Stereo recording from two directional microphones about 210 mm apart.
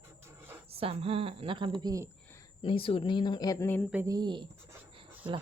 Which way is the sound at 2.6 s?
25° left (ahead or behind).